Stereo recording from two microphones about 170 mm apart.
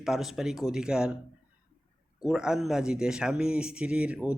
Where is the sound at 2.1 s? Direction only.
5° right (ahead or behind).